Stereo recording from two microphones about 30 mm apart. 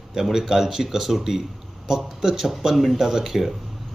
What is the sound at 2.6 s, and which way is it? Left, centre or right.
Speech, centre.